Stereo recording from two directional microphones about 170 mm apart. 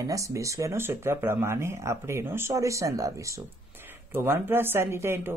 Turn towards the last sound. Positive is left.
turn(degrees=-15)  # may be behind; listen again after turning